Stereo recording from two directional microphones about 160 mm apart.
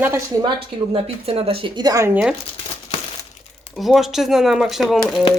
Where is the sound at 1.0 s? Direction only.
35° right (ahead or behind); by 2.1 s 20° right (ahead or behind).